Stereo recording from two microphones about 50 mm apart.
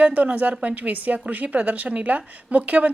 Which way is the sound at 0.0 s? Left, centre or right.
Right.